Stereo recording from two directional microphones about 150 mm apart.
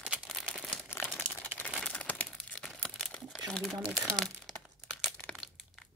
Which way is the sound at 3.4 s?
5° left (ahead or behind).